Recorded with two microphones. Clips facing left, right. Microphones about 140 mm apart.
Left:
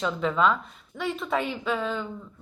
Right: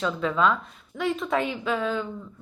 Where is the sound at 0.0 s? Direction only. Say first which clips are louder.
Even; centre (ahead or behind).